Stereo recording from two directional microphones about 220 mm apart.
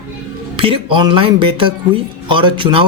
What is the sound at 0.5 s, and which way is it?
Speech, 25° right (ahead or behind).